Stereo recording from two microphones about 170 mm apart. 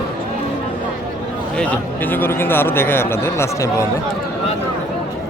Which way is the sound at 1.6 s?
10° left (ahead or behind).